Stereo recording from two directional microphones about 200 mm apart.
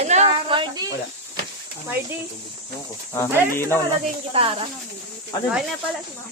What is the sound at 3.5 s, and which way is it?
Speech, 10° left (ahead or behind).